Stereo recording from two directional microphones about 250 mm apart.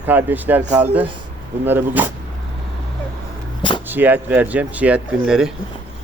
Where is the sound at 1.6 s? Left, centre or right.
Centre.